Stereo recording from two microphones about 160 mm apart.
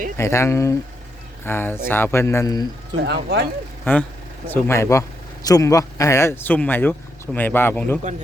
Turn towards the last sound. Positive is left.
turn(degrees=10)  # may be behind; listen again after turning